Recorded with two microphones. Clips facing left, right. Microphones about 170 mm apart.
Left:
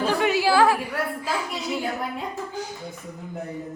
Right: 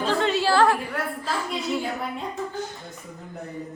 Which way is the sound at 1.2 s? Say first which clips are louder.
Even; 5° left (ahead or behind).